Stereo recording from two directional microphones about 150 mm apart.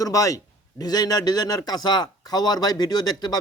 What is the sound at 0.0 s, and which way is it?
Speech, 20° left (ahead or behind).